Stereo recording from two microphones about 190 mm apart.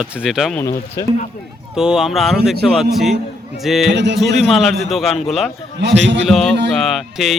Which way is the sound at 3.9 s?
65° right (ahead or behind).